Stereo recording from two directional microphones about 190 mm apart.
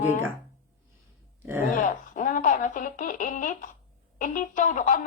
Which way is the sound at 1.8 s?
40° left (ahead or behind).